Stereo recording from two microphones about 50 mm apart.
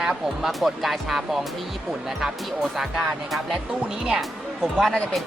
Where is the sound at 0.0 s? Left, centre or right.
Centre.